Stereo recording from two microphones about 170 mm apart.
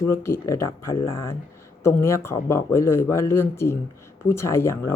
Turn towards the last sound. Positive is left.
turn(degrees=15)  # may be behind; listen again after turning